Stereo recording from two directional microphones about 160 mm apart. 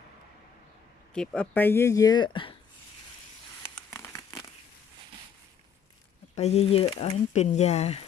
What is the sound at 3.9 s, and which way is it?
Crumpling, 15° left (ahead or behind).